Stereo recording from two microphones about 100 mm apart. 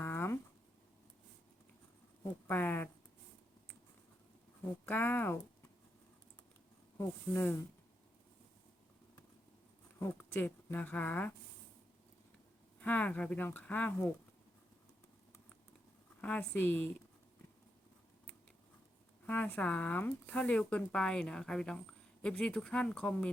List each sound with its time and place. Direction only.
0.0 s a sound: 20° left (ahead or behind)
2.5 s speech: 20° left (ahead or behind)
4.9 s speech: 20° left (ahead or behind)
7.0 s speech: 20° left (ahead or behind)
10.0 s speech: 20° left (ahead or behind)
12.8 s speech: 15° left (ahead or behind)
16.4 s speech: 20° left (ahead or behind)
19.2 s speech: 15° left (ahead or behind)